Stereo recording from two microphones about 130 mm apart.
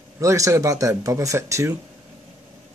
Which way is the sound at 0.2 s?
20° right (ahead or behind).